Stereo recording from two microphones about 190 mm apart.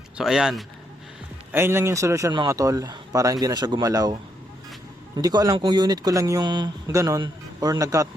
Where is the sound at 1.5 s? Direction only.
10° right (ahead or behind).